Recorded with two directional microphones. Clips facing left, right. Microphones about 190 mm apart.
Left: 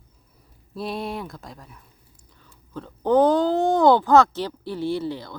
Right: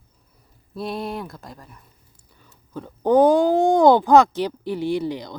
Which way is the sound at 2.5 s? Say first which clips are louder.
Right 2 dB; 15° right (ahead or behind).